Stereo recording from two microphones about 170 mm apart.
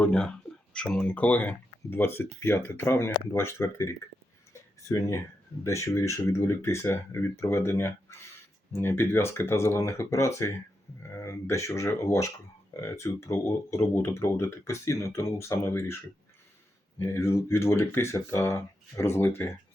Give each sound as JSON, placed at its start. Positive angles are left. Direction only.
{"t": 0.0, "sound": "speech", "side_deg": 5}
{"t": 17.0, "sound": "speech", "side_deg": 15}